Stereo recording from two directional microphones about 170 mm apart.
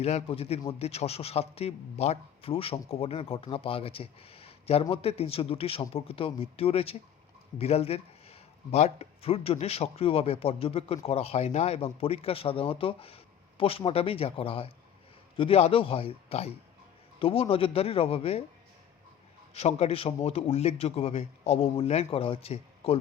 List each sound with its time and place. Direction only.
0.0 s speech: 40° left (ahead or behind)
19.5 s speech: 40° left (ahead or behind)